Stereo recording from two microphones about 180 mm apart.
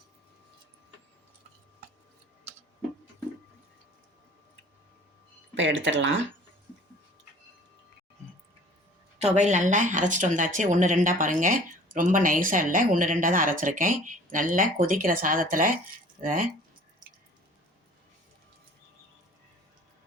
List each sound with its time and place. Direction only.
5.5 s speech: 90° right
9.1 s a woman's voice: 40° right (ahead or behind)
17.0 s drip: 20° right (ahead or behind)